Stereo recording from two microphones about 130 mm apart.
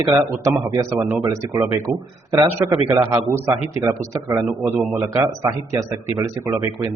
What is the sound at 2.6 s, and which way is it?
A man's voice, 25° right (ahead or behind).